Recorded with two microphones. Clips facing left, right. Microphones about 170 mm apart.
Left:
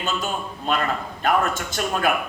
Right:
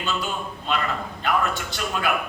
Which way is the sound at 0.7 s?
45° left (ahead or behind).